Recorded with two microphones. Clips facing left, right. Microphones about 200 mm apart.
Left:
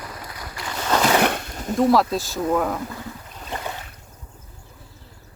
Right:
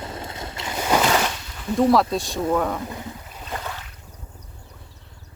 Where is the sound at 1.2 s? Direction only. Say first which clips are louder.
Left 6 dB; 55° left (ahead or behind).